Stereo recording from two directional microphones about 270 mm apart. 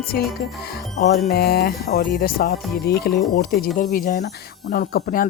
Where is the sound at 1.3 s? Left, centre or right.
Left.